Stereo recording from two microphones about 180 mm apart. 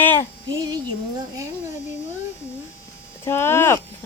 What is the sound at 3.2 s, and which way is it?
Speech, 15° left (ahead or behind).